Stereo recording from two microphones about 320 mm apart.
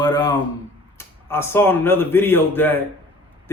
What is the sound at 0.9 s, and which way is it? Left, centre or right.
Speech, centre.